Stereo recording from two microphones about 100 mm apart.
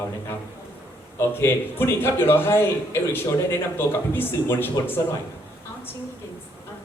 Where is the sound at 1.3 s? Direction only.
25° left (ahead or behind).